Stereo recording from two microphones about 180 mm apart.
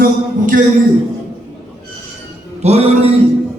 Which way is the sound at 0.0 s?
50° right (ahead or behind).